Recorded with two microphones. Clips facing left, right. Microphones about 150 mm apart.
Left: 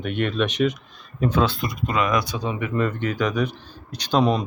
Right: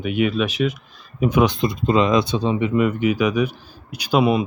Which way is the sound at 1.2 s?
15° right (ahead or behind).